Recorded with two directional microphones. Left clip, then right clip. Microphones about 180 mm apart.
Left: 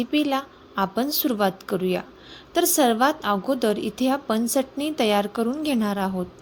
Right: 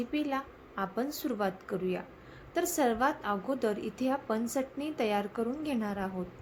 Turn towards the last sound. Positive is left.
turn(degrees=45)  # may be behind; listen again after turning